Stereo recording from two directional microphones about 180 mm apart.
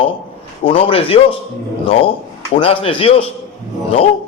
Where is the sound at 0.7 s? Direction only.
30° left (ahead or behind).